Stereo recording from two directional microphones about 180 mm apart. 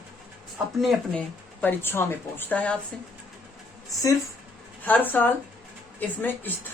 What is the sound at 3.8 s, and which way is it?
A woman's voice, 20° left (ahead or behind).